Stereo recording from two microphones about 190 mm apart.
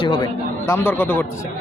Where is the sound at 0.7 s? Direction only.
10° left (ahead or behind).